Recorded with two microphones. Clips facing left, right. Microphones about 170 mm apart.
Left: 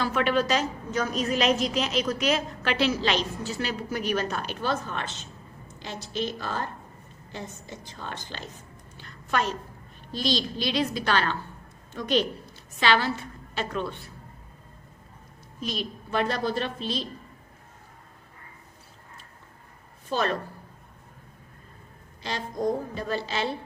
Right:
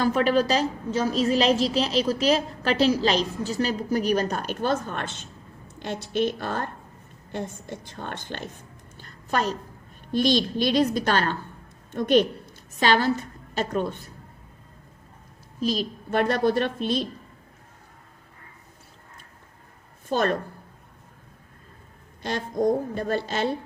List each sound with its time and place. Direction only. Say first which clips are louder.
0.0 s a woman's voice: right 4 dB; 40° right (ahead or behind); by 8.4 s 55° right (ahead or behind)
9.0 s a sound: right 2 dB; 40° right (ahead or behind)
10.1 s a woman's voice: right 6 dB; 55° right (ahead or behind)
15.6 s a woman's voice: right 6 dB; 40° right (ahead or behind)
20.1 s a woman's voice: right 3 dB; 50° right (ahead or behind)
22.2 s a woman's voice: right 4 dB; 50° right (ahead or behind)